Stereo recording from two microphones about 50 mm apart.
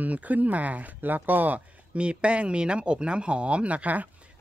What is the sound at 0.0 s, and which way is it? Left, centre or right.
Speech, right.